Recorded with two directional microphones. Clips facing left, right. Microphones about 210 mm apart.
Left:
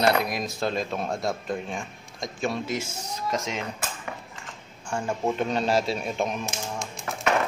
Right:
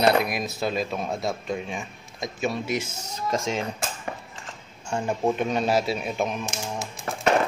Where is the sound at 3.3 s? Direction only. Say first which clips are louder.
Right 4 dB; 30° right (ahead or behind).